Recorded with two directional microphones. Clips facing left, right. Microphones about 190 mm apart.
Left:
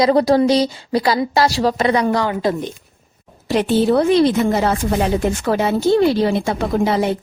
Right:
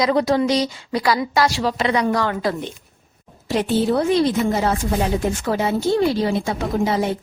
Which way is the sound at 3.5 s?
70° left (ahead or behind).